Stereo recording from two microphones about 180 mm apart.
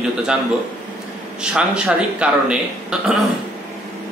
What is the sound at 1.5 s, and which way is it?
Speech, 5° right (ahead or behind).